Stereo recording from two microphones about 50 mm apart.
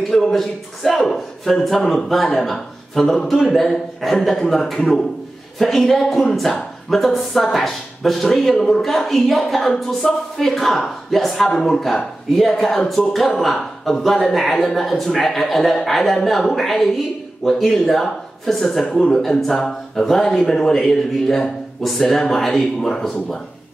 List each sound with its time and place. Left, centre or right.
0.1 s a man's voice: centre